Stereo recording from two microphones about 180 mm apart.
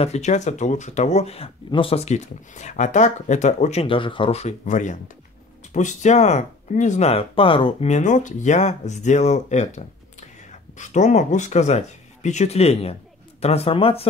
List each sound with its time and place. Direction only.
0.0 s speech: 40° left (ahead or behind)